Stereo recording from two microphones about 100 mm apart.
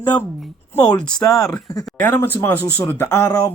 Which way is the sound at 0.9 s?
35° left (ahead or behind).